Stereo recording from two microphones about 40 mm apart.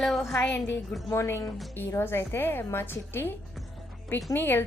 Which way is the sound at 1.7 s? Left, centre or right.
Left.